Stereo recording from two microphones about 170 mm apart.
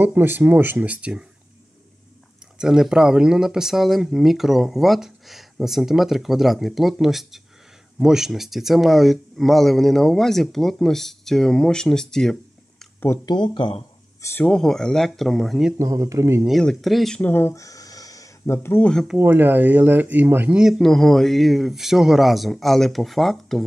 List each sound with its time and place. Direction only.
0.0 s speech: 10° right (ahead or behind)
2.6 s speech: 5° right (ahead or behind)
13.0 s speech: 20° left (ahead or behind)
14.2 s speech: 10° left (ahead or behind)
15.8 s speech: 20° right (ahead or behind)
16.4 s speech: centre (ahead or behind)
19.1 s speech: 10° right (ahead or behind)